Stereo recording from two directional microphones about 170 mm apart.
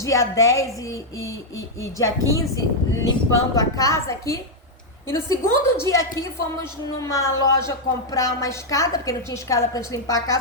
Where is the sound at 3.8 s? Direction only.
20° left (ahead or behind).